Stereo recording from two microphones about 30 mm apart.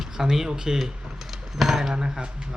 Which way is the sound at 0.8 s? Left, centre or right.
Centre.